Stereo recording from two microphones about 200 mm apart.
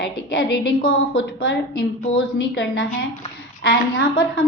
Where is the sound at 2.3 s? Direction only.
60° left (ahead or behind).